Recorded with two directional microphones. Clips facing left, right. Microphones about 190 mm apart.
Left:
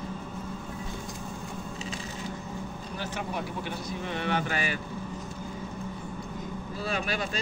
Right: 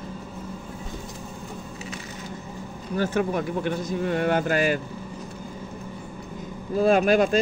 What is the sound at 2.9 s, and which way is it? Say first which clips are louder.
Speech: right 11 dB; 50° right (ahead or behind).